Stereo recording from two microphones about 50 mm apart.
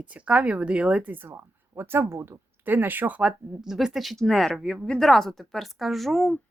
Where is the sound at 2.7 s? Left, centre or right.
Right.